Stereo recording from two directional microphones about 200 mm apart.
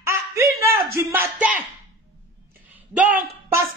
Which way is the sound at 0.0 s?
15° right (ahead or behind).